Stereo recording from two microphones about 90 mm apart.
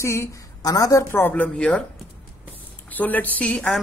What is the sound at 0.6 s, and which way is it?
Speech, 45° left (ahead or behind).